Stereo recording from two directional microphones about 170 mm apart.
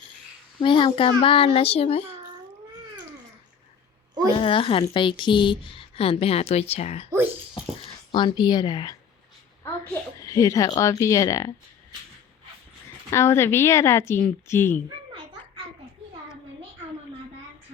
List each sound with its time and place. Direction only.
0.6 s a woman's voice: 30° left (ahead or behind)
4.4 s a woman's voice: 30° left (ahead or behind)
8.1 s a child's voice: 25° left (ahead or behind)
13.1 s a woman's voice: 15° left (ahead or behind)